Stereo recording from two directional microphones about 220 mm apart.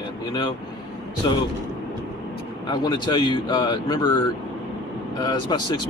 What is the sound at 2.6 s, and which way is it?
Speech, 20° left (ahead or behind).